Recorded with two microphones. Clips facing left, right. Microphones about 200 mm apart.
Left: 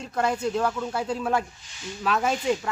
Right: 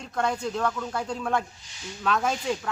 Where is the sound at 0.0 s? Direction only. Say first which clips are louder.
Left 2 dB; 5° left (ahead or behind).